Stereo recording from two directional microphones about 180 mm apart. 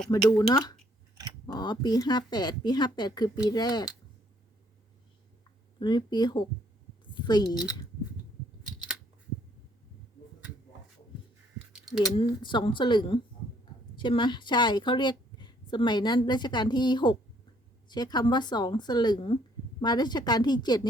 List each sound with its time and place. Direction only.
0.1 s a woman's voice: 20° left (ahead or behind)
5.8 s a woman's voice: 25° left (ahead or behind)
7.5 s speech: 5° right (ahead or behind)
11.6 s a sound: 5° right (ahead or behind)
12.1 s a woman's voice: 25° left (ahead or behind)